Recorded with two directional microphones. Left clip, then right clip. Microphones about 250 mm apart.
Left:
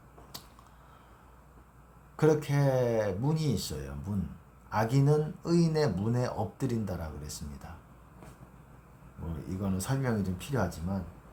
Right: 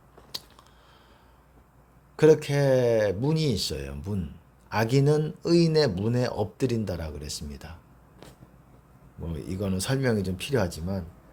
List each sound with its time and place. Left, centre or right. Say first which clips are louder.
2.1 s speech: right 7 dB; right
9.4 s speech: right 6 dB; right